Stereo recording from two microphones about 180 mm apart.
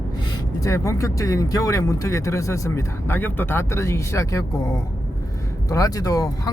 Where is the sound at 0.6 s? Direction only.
15° left (ahead or behind).